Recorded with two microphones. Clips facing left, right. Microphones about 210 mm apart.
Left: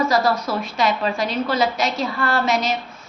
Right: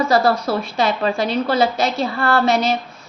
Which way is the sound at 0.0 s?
30° right (ahead or behind).